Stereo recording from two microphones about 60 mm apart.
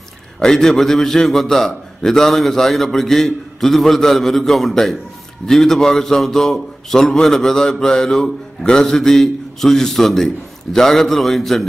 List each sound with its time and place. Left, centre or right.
0.4 s a man's voice: centre